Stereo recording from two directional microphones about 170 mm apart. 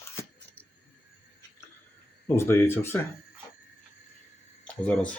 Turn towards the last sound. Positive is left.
turn(degrees=10)  # may be behind; listen again after turning